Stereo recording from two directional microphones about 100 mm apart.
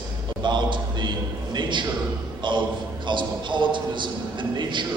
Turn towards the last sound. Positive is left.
turn(degrees=-55)  # may be behind; listen again after turning